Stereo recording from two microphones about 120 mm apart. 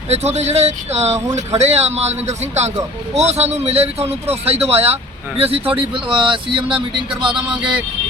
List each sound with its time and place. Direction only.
0.1 s speech: 65° right (ahead or behind)
5.9 s speech: 45° right (ahead or behind)